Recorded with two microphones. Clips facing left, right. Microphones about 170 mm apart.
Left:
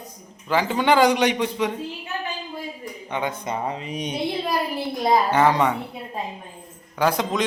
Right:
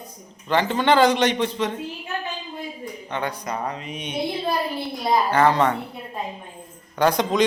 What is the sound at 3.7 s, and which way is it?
Speech, 35° left (ahead or behind).